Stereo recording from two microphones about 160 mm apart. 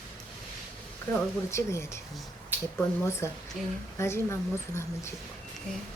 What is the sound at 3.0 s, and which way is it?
Speech, 15° left (ahead or behind).